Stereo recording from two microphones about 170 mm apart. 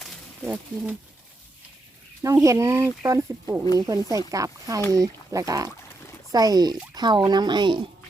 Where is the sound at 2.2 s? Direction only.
20° right (ahead or behind).